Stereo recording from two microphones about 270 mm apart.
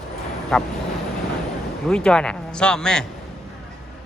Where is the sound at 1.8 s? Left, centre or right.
Centre.